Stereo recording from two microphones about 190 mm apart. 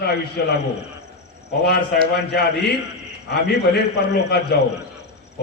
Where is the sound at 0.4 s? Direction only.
55° left (ahead or behind).